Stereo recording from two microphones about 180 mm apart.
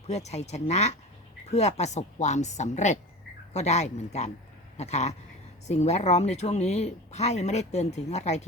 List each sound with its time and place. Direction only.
0.1 s speech: 40° left (ahead or behind)